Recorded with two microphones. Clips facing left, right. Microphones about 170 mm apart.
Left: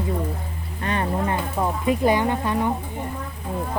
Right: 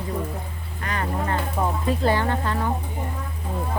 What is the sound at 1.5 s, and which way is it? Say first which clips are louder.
Speech: left 3 dB; 15° left (ahead or behind).